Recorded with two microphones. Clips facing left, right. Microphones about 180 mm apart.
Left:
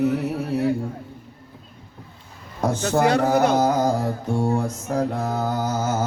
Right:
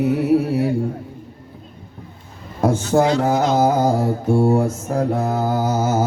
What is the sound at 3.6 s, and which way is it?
Humming, 10° right (ahead or behind).